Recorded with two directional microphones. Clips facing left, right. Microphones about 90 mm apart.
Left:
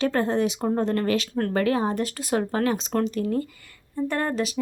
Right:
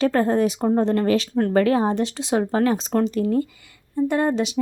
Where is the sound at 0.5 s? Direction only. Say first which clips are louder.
Right 4 dB; 25° right (ahead or behind).